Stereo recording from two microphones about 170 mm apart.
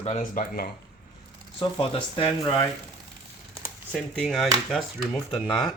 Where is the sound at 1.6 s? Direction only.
35° left (ahead or behind).